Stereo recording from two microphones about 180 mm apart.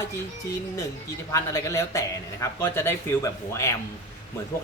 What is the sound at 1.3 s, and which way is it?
Speech, 15° left (ahead or behind).